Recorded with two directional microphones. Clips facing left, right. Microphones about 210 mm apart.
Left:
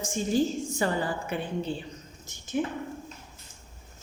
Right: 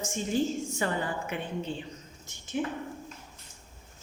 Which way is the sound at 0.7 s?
35° left (ahead or behind).